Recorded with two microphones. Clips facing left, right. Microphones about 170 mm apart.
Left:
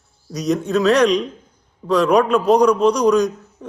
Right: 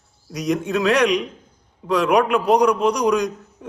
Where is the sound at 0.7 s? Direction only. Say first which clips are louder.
Left 4 dB; 15° right (ahead or behind).